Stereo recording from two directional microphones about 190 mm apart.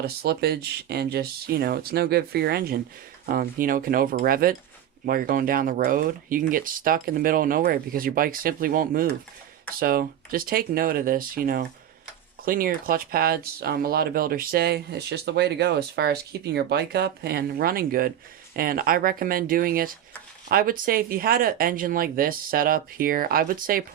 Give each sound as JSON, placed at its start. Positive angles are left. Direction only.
{"t": 0.0, "sound": "speech", "side_deg": -55}